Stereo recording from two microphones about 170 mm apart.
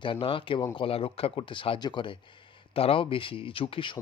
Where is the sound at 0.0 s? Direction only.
30° left (ahead or behind).